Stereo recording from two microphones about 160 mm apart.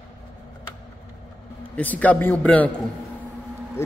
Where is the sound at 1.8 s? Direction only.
10° left (ahead or behind).